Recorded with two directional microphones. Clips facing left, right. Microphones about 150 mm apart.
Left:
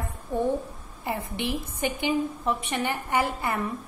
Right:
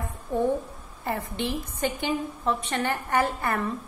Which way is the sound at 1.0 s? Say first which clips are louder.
Right 1 dB; 15° left (ahead or behind).